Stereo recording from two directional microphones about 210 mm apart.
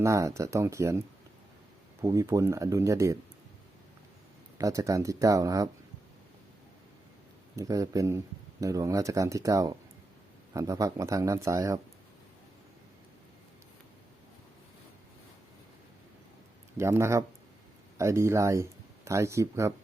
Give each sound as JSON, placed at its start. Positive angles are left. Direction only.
{"t": 0.0, "sound": "speech", "side_deg": -15}
{"t": 4.5, "sound": "speech", "side_deg": -15}
{"t": 7.5, "sound": "speech", "side_deg": -15}
{"t": 16.7, "sound": "speech", "side_deg": -15}